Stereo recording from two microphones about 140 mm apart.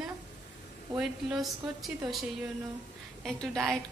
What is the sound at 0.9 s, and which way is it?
A woman's voice, centre (ahead or behind).